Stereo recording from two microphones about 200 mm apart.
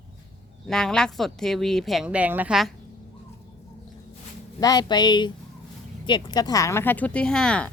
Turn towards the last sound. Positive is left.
turn(degrees=5)  # may be behind; listen again after turning